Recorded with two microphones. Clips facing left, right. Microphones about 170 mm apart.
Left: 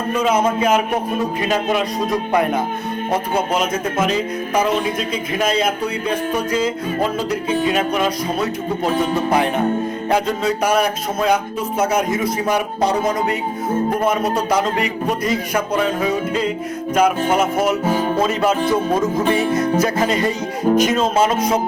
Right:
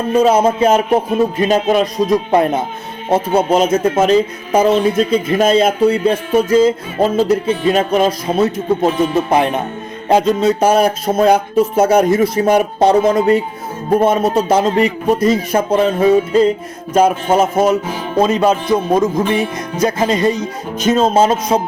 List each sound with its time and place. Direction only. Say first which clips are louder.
0.1 s music: right 6 dB; 30° right (ahead or behind)